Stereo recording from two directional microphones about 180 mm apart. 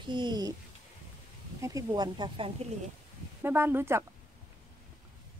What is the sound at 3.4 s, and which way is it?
Speech, 10° right (ahead or behind).